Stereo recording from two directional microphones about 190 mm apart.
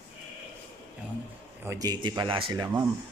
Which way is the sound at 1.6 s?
15° right (ahead or behind).